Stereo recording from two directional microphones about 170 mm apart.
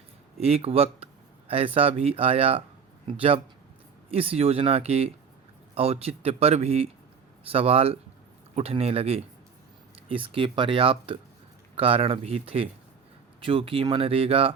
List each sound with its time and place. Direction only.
0.3 s speech: 35° right (ahead or behind)